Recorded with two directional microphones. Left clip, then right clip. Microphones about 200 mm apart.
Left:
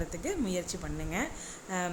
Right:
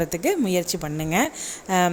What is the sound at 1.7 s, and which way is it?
Speech, 45° right (ahead or behind).